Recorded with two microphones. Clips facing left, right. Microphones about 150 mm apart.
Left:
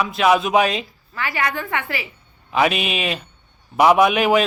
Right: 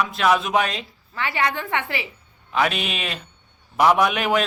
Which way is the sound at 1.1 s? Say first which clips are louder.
Even; 25° right (ahead or behind).